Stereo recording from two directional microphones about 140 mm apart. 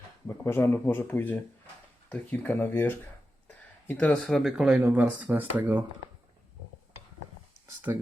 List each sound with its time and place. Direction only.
0.4 s speech: 15° left (ahead or behind); by 5.8 s 15° right (ahead or behind)
7.9 s speech: 15° right (ahead or behind)